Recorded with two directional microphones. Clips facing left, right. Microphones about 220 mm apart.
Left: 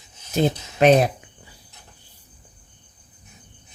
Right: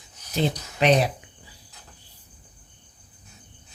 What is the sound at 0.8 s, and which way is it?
Speech, 45° left (ahead or behind).